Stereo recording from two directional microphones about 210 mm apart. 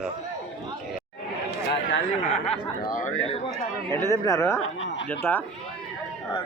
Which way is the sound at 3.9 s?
15° left (ahead or behind).